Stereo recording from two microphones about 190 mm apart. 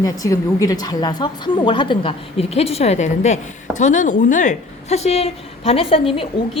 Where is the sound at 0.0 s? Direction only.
20° left (ahead or behind).